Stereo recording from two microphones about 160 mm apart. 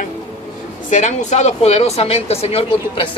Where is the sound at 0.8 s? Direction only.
50° left (ahead or behind).